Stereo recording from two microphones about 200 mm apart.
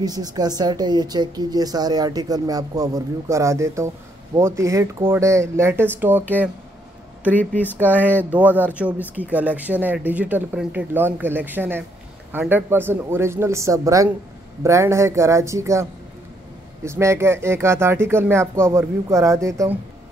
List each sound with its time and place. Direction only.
0.0 s a woman's voice: 20° right (ahead or behind)
7.2 s speech: 10° left (ahead or behind)
7.7 s speech: 10° right (ahead or behind)
8.0 s speech: 10° left (ahead or behind)
8.3 s speech: 5° right (ahead or behind)